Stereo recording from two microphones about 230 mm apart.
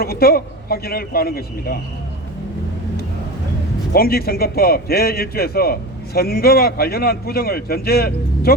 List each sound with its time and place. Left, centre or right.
0.0 s a man's voice: left
3.9 s a man's voice: left